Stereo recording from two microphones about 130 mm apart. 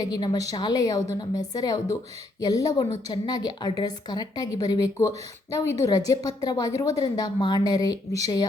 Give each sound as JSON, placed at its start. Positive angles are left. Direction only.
{"t": 0.0, "sound": "a woman's voice", "side_deg": 30}